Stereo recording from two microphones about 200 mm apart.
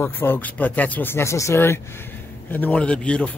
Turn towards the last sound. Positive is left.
turn(degrees=5)  # may be behind; listen again after turning